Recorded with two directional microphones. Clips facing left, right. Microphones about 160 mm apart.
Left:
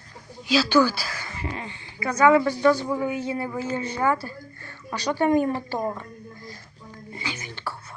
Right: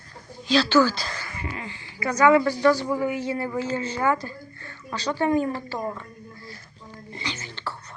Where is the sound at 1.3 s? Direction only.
30° left (ahead or behind).